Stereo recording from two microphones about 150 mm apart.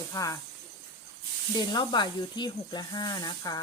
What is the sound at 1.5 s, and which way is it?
Speech, 30° left (ahead or behind).